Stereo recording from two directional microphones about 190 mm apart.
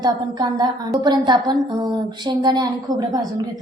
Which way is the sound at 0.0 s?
20° right (ahead or behind).